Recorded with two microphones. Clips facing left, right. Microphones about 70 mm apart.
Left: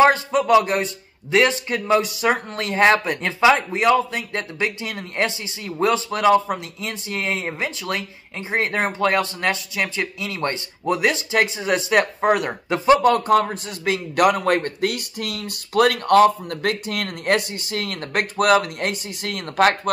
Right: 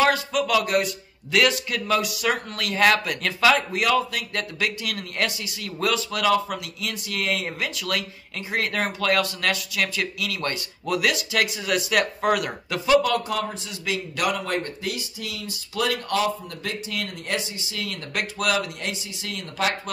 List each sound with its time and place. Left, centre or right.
0.0 s speech: left